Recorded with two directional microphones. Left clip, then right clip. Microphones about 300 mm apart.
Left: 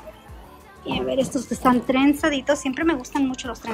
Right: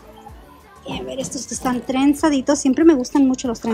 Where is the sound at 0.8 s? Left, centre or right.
Centre.